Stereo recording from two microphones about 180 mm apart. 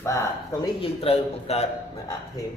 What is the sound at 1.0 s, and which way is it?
Speech, 35° left (ahead or behind).